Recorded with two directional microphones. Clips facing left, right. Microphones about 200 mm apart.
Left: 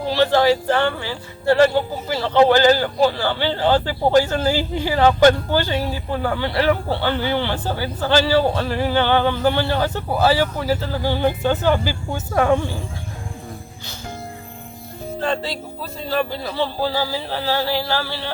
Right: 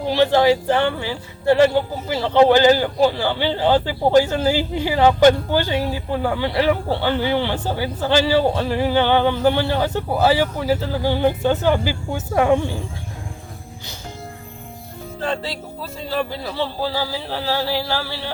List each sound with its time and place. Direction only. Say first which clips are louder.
0.1 s speech: right 1 dB; 15° right (ahead or behind)
15.2 s speech: left 1 dB; 5° right (ahead or behind)